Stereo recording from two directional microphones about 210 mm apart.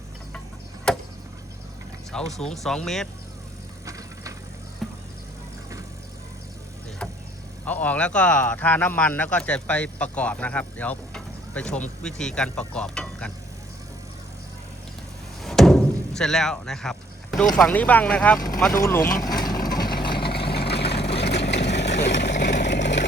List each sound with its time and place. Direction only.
0.9 s a sound: 5° left (ahead or behind)
2.1 s a man's voice: 5° left (ahead or behind)
3.8 s vehicle: 15° right (ahead or behind)
4.8 s music: centre (ahead or behind)
7.0 s vehicle: 5° left (ahead or behind)
7.6 s a man's voice: 5° left (ahead or behind)
15.4 s a sound: centre (ahead or behind)
17.6 s speech: 5° left (ahead or behind)
19.2 s vehicle: 20° left (ahead or behind)
19.9 s vehicle: 45° left (ahead or behind)